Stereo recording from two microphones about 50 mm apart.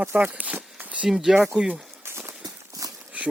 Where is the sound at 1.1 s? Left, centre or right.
Centre.